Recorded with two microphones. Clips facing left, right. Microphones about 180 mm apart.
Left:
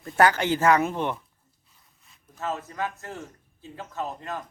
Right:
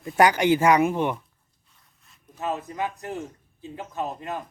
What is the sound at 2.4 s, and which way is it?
A man's voice, 15° right (ahead or behind).